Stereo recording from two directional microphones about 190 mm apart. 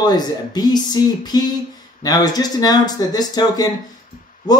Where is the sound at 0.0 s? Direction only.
20° left (ahead or behind).